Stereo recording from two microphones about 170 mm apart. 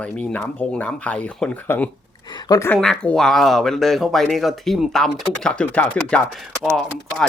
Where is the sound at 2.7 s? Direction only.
Centre (ahead or behind).